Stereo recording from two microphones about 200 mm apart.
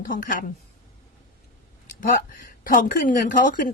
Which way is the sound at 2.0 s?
40° left (ahead or behind).